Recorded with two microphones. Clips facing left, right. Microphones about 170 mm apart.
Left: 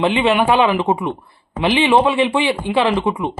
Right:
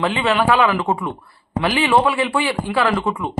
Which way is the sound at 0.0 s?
25° left (ahead or behind).